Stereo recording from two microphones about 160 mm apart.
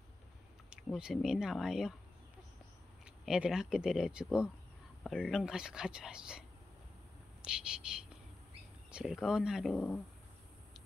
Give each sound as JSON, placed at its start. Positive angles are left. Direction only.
{"t": 0.9, "sound": "speech", "side_deg": -5}
{"t": 3.3, "sound": "speech", "side_deg": -5}
{"t": 7.4, "sound": "speech", "side_deg": -5}
{"t": 9.8, "sound": "speech", "side_deg": 15}